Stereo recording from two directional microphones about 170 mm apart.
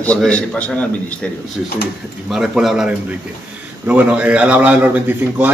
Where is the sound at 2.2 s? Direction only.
Centre (ahead or behind).